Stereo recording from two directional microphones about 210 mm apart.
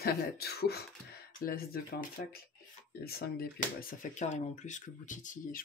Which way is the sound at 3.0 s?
45° left (ahead or behind).